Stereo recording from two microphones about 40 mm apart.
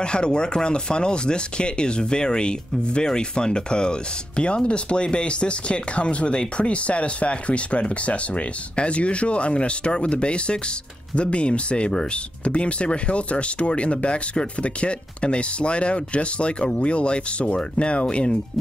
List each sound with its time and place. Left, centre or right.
0.0 s speech: left